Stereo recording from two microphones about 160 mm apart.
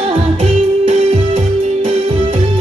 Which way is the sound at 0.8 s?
35° right (ahead or behind).